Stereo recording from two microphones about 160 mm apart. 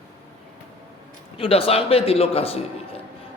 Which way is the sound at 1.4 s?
35° left (ahead or behind).